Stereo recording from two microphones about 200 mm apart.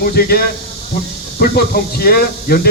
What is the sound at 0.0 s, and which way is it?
Speech, 50° left (ahead or behind).